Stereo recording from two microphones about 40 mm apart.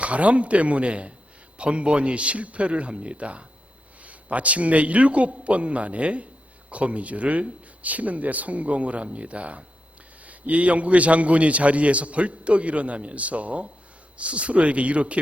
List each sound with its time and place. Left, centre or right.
0.0 s a man's voice: right